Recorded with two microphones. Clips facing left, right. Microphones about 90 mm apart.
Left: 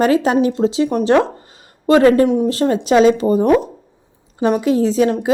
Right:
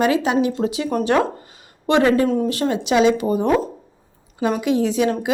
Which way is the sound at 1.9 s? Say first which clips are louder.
Left 5 dB; 40° left (ahead or behind).